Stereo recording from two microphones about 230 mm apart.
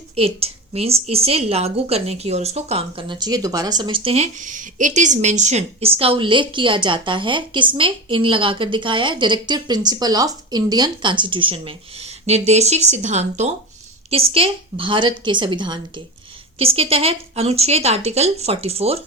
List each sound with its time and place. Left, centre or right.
0.2 s a woman's voice: right